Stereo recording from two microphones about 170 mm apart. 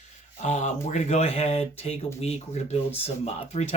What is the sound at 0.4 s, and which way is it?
Speech, 45° left (ahead or behind).